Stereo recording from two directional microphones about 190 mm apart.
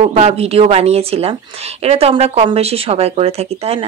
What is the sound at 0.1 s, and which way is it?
Speech, 30° right (ahead or behind).